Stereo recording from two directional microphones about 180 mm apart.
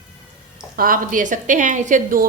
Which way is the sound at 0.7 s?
50° right (ahead or behind).